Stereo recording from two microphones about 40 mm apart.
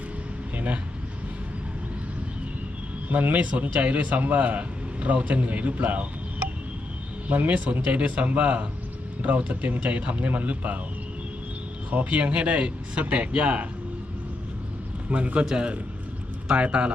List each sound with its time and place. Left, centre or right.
0.5 s a sound: right
3.1 s a man's voice: right
12.0 s a man's voice: right
15.1 s a man's voice: right
16.8 s a man's voice: right